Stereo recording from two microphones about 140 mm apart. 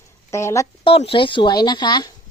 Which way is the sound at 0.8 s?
40° left (ahead or behind).